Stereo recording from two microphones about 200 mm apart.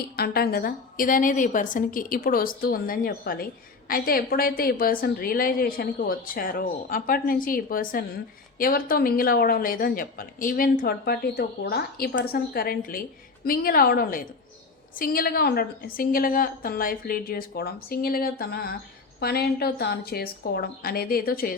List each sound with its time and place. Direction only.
0.2 s speech: 50° left (ahead or behind)